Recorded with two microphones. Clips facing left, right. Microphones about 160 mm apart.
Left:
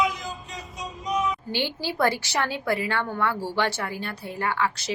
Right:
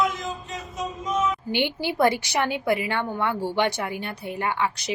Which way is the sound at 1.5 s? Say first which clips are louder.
Right 3 dB; 20° right (ahead or behind).